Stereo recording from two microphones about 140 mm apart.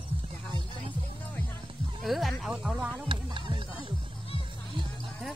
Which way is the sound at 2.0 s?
Centre (ahead or behind).